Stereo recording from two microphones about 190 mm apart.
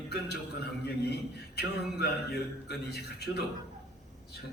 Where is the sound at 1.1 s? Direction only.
60° left (ahead or behind).